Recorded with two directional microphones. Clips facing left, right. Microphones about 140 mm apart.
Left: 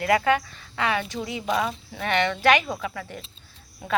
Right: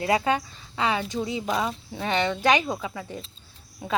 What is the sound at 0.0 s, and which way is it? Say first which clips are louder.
Speech: left 2 dB; 20° right (ahead or behind).